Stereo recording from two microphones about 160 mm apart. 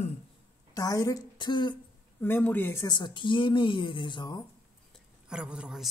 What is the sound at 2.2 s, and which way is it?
Speech, 10° left (ahead or behind).